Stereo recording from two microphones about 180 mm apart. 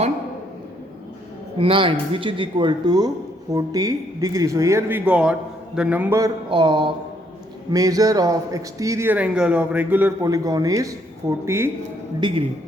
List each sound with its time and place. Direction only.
1.5 s a man's voice: 30° right (ahead or behind); by 6.3 s 15° right (ahead or behind)
6.5 s a man's voice: 25° right (ahead or behind); by 10.1 s 10° right (ahead or behind)
10.2 s speech: 20° right (ahead or behind)
12.2 s speech: 25° right (ahead or behind)